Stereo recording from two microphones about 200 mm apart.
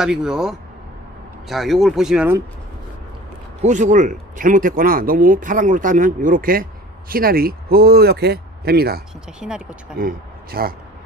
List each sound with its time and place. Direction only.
0.0 s speech: 5° right (ahead or behind)
3.6 s speech: 40° right (ahead or behind)
9.4 s speech: 5° right (ahead or behind)
9.9 s speech: 45° right (ahead or behind)